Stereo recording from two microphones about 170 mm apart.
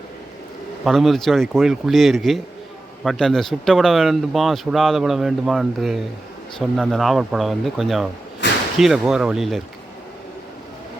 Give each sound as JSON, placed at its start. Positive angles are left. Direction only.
{"t": 0.9, "sound": "speech", "side_deg": 0}
{"t": 8.4, "sound": "whip", "side_deg": 90}
{"t": 8.8, "sound": "speech", "side_deg": 0}